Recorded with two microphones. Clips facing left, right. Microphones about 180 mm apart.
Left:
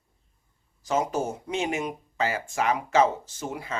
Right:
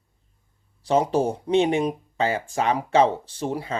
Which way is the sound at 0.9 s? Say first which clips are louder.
Right 6 dB; 35° right (ahead or behind).